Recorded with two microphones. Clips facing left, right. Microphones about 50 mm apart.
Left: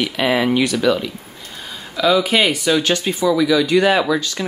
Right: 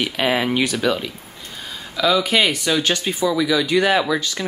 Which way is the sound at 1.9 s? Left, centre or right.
Centre.